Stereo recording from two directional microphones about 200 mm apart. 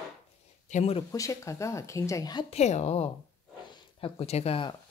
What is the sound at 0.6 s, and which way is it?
Speech, 35° left (ahead or behind).